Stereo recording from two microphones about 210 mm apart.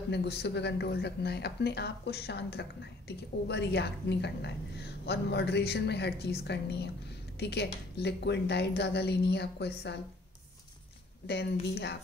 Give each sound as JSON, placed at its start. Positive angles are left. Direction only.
{"t": 0.1, "sound": "speech", "side_deg": 55}
{"t": 11.6, "sound": "speech", "side_deg": 50}